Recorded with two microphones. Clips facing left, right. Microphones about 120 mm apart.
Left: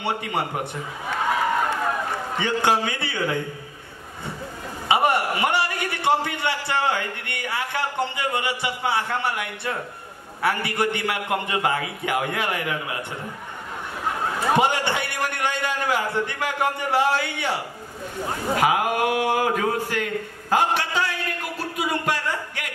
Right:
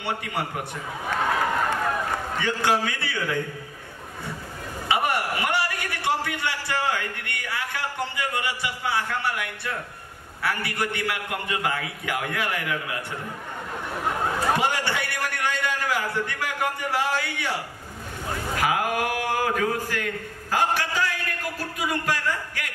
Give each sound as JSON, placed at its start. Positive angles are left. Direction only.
{"t": 0.0, "sound": "a man's voice", "side_deg": 20}
{"t": 2.3, "sound": "a man's voice", "side_deg": 20}
{"t": 4.8, "sound": "a man's voice", "side_deg": 25}
{"t": 14.5, "sound": "a man's voice", "side_deg": 20}
{"t": 18.6, "sound": "a man's voice", "side_deg": 20}